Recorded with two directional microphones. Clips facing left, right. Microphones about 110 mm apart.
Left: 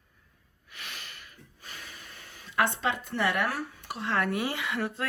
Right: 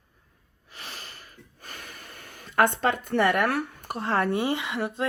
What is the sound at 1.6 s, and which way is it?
Speech, 50° right (ahead or behind).